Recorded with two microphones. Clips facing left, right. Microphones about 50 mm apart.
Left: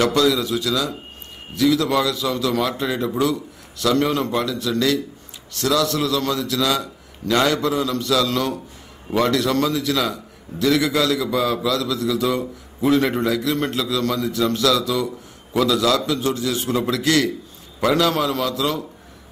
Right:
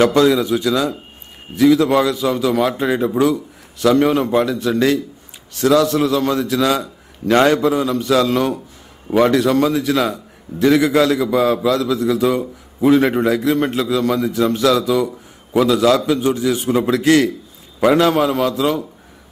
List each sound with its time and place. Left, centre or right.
0.0 s a man's voice: right
7.6 s a man's voice: centre